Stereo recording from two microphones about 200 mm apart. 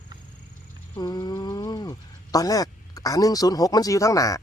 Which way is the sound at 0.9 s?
20° left (ahead or behind).